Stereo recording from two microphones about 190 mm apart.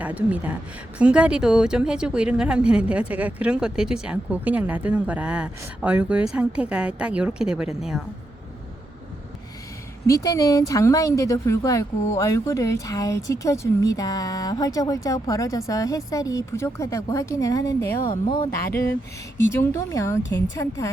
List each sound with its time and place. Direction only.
0.0 s a woman's voice: 5° right (ahead or behind)
10.1 s speech: 15° left (ahead or behind)
19.5 s speech: 15° left (ahead or behind)